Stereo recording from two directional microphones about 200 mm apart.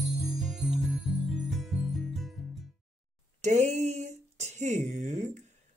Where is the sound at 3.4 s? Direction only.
35° right (ahead or behind).